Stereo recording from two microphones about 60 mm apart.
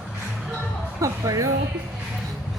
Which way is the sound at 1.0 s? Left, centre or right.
Right.